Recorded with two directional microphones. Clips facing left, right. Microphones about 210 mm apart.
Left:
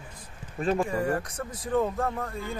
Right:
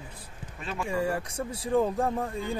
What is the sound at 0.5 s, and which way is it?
Speech, 45° left (ahead or behind).